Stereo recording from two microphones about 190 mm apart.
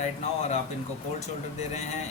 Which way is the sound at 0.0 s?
40° left (ahead or behind).